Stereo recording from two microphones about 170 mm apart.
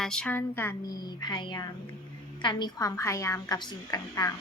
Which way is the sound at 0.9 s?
25° left (ahead or behind).